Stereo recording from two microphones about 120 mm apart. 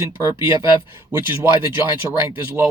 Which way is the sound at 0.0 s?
25° right (ahead or behind).